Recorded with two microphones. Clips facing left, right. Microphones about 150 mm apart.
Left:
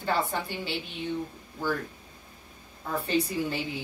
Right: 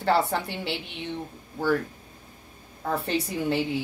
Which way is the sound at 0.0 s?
75° right (ahead or behind).